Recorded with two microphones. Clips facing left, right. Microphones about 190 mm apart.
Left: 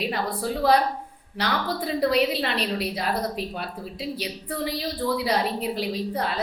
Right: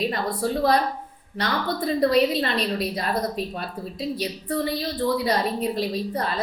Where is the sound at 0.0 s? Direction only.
10° left (ahead or behind).